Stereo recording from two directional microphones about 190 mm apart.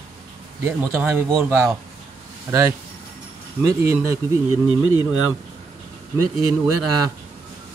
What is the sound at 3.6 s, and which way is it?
Speech, 15° right (ahead or behind).